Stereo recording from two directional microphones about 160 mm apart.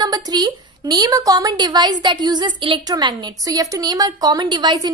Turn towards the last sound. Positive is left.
turn(degrees=-25)  # may be behind; listen again after turning